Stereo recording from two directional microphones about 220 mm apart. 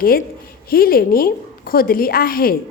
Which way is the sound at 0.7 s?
40° left (ahead or behind).